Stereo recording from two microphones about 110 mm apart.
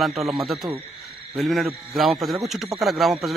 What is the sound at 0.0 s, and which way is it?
Speech, centre (ahead or behind).